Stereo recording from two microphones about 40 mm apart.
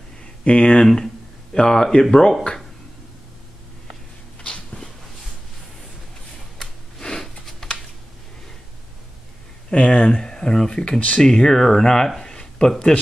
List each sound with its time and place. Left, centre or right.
0.2 s a sound: left
0.8 s speech: centre
7.0 s sniff: centre
7.6 s typing: centre
9.7 s speech: left
12.2 s a sound: centre